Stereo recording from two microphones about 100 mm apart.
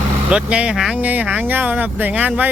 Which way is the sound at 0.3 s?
10° right (ahead or behind).